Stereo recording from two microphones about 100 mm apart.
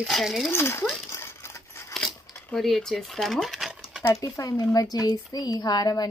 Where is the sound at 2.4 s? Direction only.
5° left (ahead or behind).